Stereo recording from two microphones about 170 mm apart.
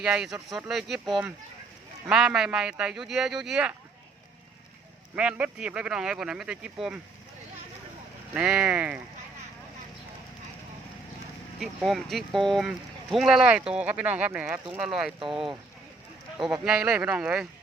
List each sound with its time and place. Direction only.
0.0 s speech: 5° right (ahead or behind)
5.1 s speech: 5° right (ahead or behind)
8.3 s speech: 5° right (ahead or behind)
11.6 s speech: centre (ahead or behind)
15.2 s speech: 30° right (ahead or behind)
16.6 s speech: 5° right (ahead or behind)